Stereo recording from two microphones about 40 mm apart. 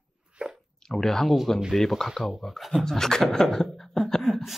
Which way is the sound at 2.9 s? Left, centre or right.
Centre.